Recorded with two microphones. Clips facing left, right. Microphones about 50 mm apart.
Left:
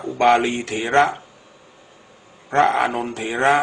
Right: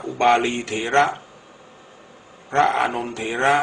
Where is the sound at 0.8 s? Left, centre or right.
Centre.